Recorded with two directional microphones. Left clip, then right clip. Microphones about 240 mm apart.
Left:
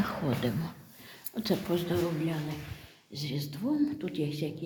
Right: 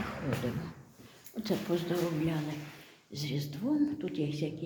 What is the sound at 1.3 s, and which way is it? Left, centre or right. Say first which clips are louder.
Speech: left 2 dB; centre.